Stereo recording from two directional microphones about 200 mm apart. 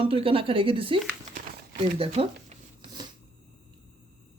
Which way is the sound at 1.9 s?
30° right (ahead or behind).